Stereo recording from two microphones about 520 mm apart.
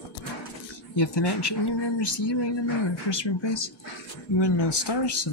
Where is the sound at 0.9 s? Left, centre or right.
Left.